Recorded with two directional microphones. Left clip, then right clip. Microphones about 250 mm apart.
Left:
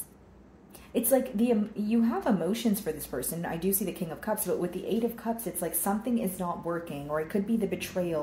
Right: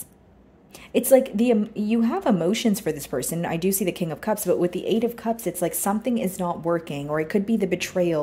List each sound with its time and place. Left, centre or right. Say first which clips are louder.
0.9 s a woman's voice: right 9 dB; right